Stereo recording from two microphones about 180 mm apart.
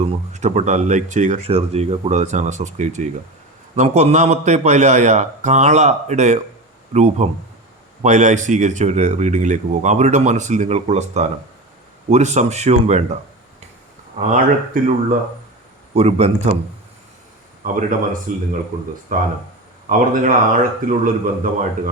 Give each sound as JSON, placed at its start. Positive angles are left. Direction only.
{"t": 0.0, "sound": "speech", "side_deg": -35}
{"t": 14.2, "sound": "a man's voice", "side_deg": -45}
{"t": 16.0, "sound": "speech", "side_deg": -35}
{"t": 17.6, "sound": "a man's voice", "side_deg": -45}